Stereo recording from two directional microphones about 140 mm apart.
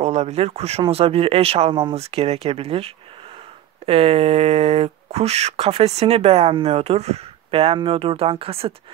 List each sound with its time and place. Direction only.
0.0 s speech: 50° right (ahead or behind)